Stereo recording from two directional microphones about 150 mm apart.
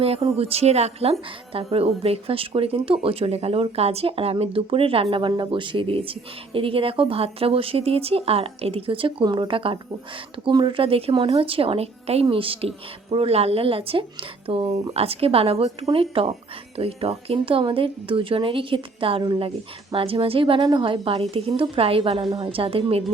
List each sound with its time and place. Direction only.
0.0 s speech: 40° right (ahead or behind)